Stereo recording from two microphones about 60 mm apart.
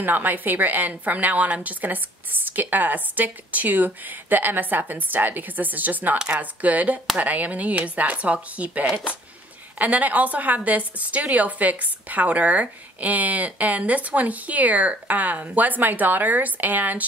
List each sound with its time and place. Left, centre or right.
0.0 s a woman's voice: right